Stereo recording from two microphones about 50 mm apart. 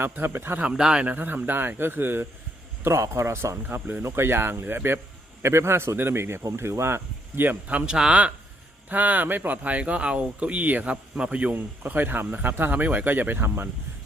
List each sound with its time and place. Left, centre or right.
0.0 s a man's voice: right
0.6 s speech: centre
1.0 s a man's voice: right
3.2 s speech: right
3.7 s speech: right
4.0 s a man's voice: right
5.4 s speech: right
7.9 s speech: centre
8.9 s speech: right
9.6 s speech: right
11.1 s speech: right
11.5 s speech: right